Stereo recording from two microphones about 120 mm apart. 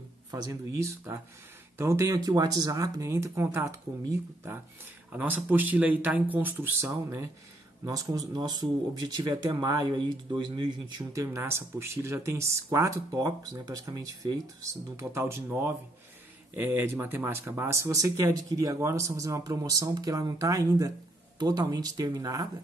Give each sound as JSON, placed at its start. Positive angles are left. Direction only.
{"t": 0.3, "sound": "speech", "side_deg": -30}